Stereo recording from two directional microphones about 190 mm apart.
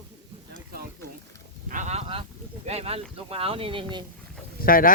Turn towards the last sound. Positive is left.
turn(degrees=50)  # may be behind; listen again after turning